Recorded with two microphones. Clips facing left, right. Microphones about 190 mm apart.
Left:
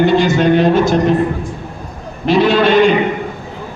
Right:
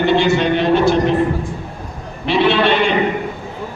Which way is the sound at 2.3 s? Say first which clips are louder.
Left 3 dB; 40° left (ahead or behind).